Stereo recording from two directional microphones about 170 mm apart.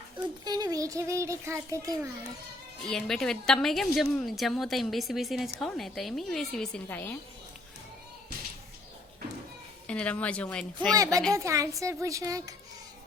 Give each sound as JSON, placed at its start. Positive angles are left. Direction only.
{"t": 0.4, "sound": "a child's voice", "side_deg": -25}
{"t": 2.8, "sound": "a woman's voice", "side_deg": 5}
{"t": 9.8, "sound": "speech", "side_deg": 5}
{"t": 10.9, "sound": "a child's voice", "side_deg": -20}